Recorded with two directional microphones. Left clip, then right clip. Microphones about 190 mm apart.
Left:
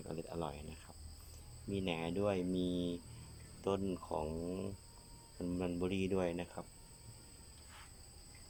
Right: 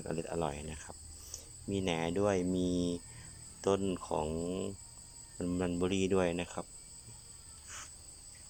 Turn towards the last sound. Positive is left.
turn(degrees=0)  # may be behind; listen again after turning